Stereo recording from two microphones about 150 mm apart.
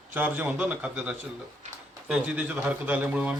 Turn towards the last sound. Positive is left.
turn(degrees=-10)  # may be behind; listen again after turning